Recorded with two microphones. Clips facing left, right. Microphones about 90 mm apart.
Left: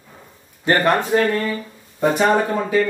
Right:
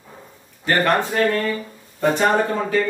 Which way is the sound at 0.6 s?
15° left (ahead or behind).